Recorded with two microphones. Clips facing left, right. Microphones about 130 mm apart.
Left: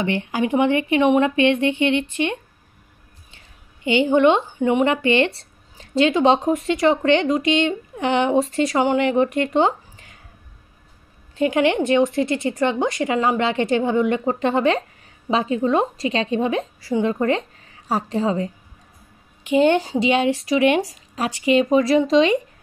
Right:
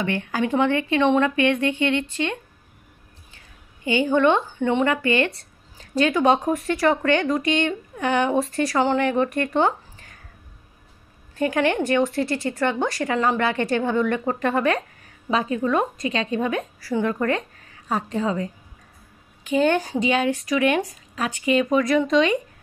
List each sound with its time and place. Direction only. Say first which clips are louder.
0.0 s speech: left 2 dB; 20° left (ahead or behind)
3.8 s speech: left 3 dB; 20° left (ahead or behind)
11.3 s speech: left 3 dB; 20° left (ahead or behind)
19.5 s speech: left 3 dB; 25° left (ahead or behind)